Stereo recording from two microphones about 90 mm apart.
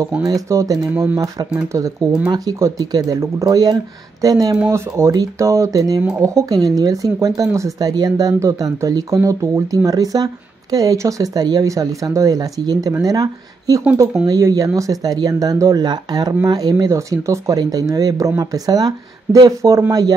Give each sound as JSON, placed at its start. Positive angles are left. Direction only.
{"t": 0.2, "sound": "speech", "side_deg": -40}
{"t": 15.8, "sound": "speech", "side_deg": -55}